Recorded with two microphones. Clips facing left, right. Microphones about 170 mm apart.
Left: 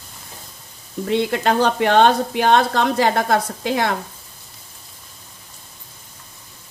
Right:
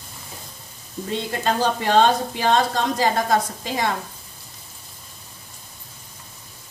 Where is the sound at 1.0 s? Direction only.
70° left (ahead or behind).